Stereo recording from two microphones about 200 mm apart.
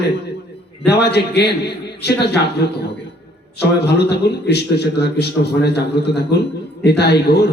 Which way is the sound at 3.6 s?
55° left (ahead or behind).